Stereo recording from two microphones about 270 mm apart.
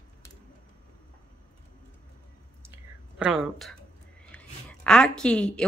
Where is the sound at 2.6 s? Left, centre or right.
Centre.